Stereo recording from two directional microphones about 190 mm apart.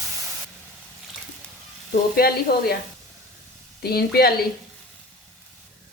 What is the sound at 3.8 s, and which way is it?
Speech, 55° left (ahead or behind).